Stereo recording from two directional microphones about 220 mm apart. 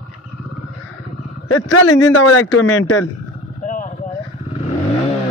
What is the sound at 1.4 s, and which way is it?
A man's voice, 85° left.